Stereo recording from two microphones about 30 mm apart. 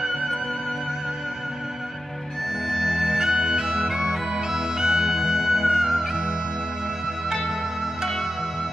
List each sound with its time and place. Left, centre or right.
2.7 s music: centre